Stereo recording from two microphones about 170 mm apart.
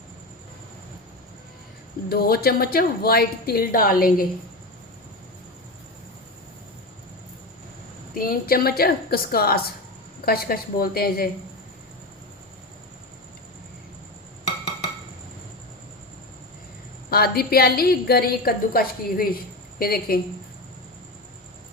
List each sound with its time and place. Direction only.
2.0 s a woman's voice: 65° left (ahead or behind)
8.1 s a woman's voice: 60° left (ahead or behind)
17.1 s a woman's voice: 65° left (ahead or behind)